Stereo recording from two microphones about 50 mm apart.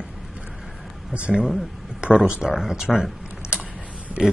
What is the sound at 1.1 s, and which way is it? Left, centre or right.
Speech, right.